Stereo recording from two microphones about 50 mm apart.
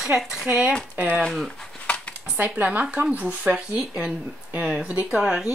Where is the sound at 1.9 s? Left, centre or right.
Left.